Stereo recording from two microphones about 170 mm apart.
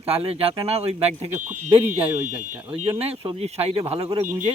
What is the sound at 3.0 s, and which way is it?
Speech, 35° right (ahead or behind).